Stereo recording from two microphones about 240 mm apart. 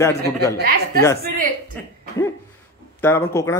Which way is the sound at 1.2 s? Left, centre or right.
Right.